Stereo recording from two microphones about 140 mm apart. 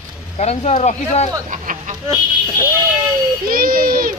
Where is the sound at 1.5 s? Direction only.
65° right (ahead or behind).